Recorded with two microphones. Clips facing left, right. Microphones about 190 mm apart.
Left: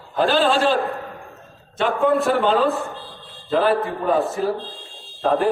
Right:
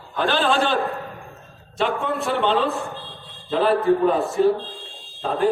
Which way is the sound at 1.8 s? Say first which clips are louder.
Left 5 dB; centre (ahead or behind).